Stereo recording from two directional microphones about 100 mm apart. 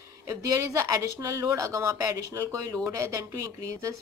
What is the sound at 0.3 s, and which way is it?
Speech, 30° right (ahead or behind).